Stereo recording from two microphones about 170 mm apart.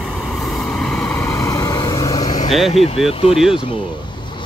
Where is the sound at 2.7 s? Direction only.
35° left (ahead or behind).